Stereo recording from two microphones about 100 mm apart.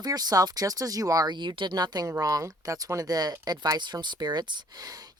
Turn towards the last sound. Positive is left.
turn(degrees=-45)  # may be behind; listen again after turning